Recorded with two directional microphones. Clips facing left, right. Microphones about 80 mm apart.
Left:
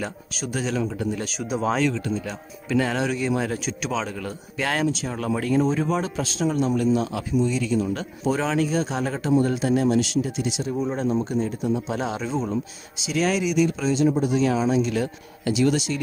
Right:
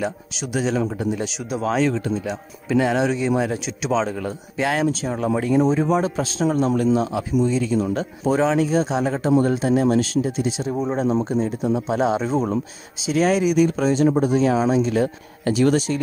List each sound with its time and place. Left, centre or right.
0.0 s speech: centre
0.7 s speech: right
1.1 s speech: centre
1.4 s speech: centre
1.8 s speech: right
2.7 s speech: right